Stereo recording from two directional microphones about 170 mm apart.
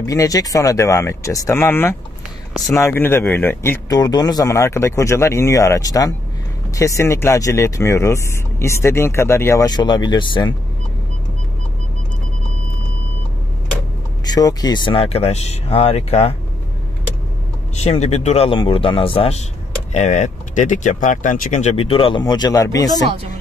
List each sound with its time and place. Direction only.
0.0 s speech: 20° left (ahead or behind)
14.2 s speech: 25° left (ahead or behind)
17.7 s speech: 40° left (ahead or behind); by 23.0 s 20° left (ahead or behind)